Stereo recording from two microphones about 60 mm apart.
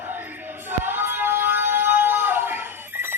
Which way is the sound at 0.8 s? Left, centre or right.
Right.